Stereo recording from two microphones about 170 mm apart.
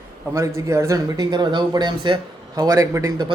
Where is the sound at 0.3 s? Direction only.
15° right (ahead or behind).